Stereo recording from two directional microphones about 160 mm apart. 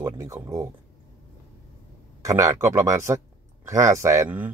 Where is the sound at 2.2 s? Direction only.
20° right (ahead or behind).